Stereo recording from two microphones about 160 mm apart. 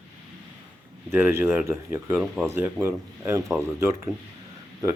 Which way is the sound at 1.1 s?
15° right (ahead or behind).